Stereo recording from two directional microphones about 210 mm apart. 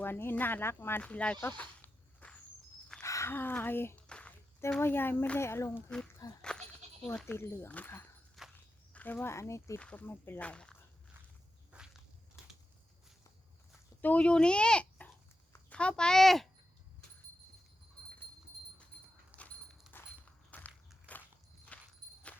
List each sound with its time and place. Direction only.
0.0 s speech: 10° left (ahead or behind)
8.4 s walk: centre (ahead or behind)
8.9 s speech: 5° left (ahead or behind)
11.7 s walk: 5° right (ahead or behind)
14.0 s speech: 5° left (ahead or behind)
19.4 s a sound: 5° left (ahead or behind)
20.0 s walk: 5° left (ahead or behind)
21.7 s jingle bell: 5° left (ahead or behind)